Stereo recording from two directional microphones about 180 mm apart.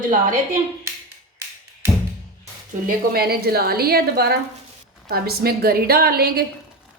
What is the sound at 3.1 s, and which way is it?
A woman's voice, 60° right (ahead or behind).